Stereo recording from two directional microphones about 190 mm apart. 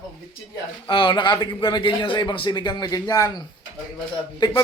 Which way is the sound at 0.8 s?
25° left (ahead or behind).